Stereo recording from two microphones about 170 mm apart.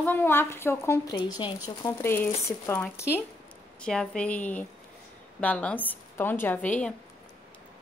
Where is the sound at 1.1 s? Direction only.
25° left (ahead or behind).